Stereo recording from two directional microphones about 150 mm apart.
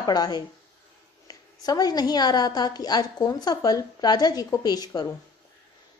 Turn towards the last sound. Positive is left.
turn(degrees=25)  # may be behind; listen again after turning